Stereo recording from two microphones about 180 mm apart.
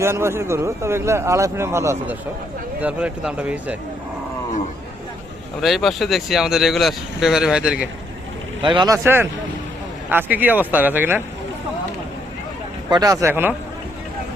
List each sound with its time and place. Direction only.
0.0 s speech: 15° right (ahead or behind)
5.5 s speech: centre (ahead or behind)
8.6 s speech: 25° right (ahead or behind)
9.0 s speech: 10° right (ahead or behind)
12.9 s speech: 20° right (ahead or behind)